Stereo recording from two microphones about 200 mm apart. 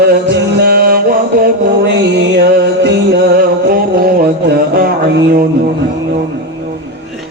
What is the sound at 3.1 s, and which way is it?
Music, 50° right (ahead or behind).